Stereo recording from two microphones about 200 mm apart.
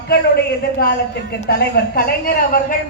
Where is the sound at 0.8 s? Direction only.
50° left (ahead or behind).